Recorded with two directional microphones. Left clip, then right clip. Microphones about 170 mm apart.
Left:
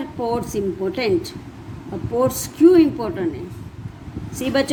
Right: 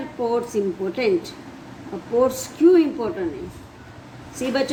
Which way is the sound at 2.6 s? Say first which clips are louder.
Left 3 dB; 50° left (ahead or behind).